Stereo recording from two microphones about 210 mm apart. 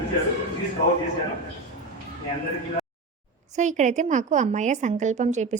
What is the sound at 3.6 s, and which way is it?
A woman's voice, 35° right (ahead or behind).